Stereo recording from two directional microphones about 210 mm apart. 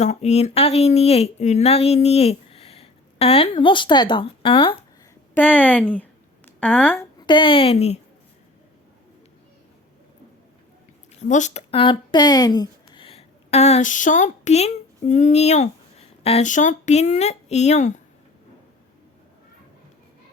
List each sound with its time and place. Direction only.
0.0 s speech: 30° left (ahead or behind)
5.3 s a woman's voice: 10° left (ahead or behind)
7.3 s speech: 25° left (ahead or behind)
11.3 s speech: 35° left (ahead or behind)